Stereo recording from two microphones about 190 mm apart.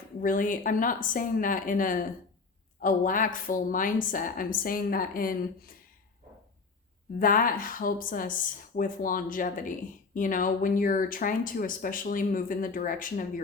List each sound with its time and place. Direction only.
0.2 s speech: 45° left (ahead or behind)
7.2 s speech: 50° left (ahead or behind)